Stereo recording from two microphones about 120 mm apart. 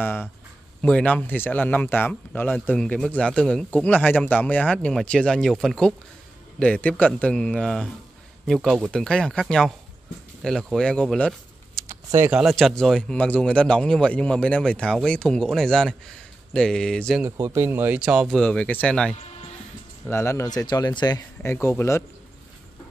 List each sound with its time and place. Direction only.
0.0 s speech: 20° left (ahead or behind)
17.2 s speech: 20° right (ahead or behind); by 19.1 s 5° left (ahead or behind)
20.1 s speech: 20° left (ahead or behind)
20.4 s speech: 35° left (ahead or behind)
21.4 s speech: 20° left (ahead or behind)